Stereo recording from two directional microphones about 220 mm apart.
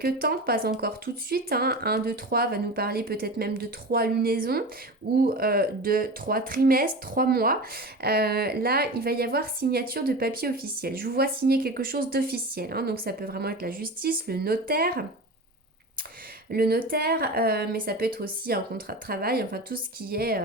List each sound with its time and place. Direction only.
0.0 s a woman's voice: 45° right (ahead or behind)
16.5 s a woman's voice: 45° right (ahead or behind)